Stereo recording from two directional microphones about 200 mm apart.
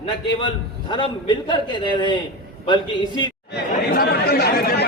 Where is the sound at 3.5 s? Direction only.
50° left (ahead or behind).